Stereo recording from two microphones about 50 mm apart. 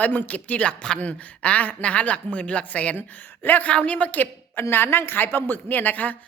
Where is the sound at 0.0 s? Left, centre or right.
Left.